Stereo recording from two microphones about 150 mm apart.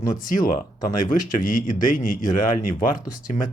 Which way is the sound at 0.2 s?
65° left (ahead or behind).